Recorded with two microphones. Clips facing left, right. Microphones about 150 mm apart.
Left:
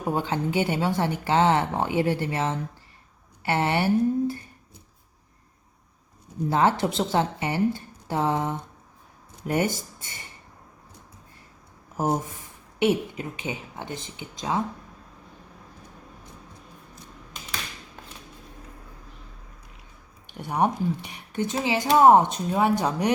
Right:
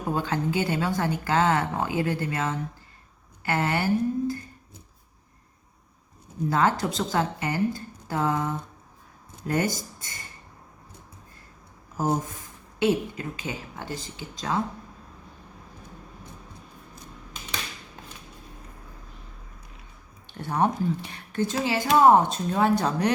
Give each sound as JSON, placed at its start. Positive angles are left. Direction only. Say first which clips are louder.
{"t": 0.0, "sound": "speech", "louder": "left 1 dB", "side_deg": 20}
{"t": 6.5, "sound": "speech", "louder": "left 2 dB", "side_deg": 25}
{"t": 12.8, "sound": "speech", "louder": "left 1 dB", "side_deg": 20}
{"t": 20.3, "sound": "speech", "louder": "even", "side_deg": 15}